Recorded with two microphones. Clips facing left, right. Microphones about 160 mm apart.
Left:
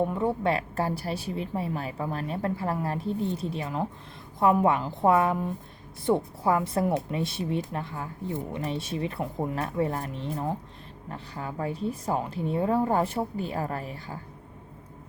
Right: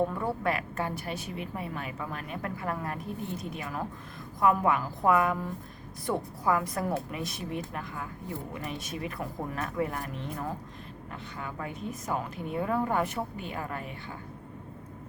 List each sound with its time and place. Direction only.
0.0 s a woman's voice: 20° left (ahead or behind)